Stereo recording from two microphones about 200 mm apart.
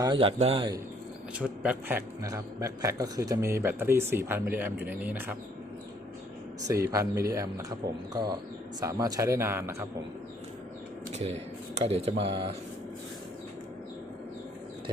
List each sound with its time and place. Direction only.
0.0 s a man's voice: 25° right (ahead or behind)
1.4 s a man's voice: 5° right (ahead or behind)
6.9 s a man's voice: 15° right (ahead or behind)
11.1 s a sound: 30° right (ahead or behind)
11.8 s a man's voice: 30° right (ahead or behind)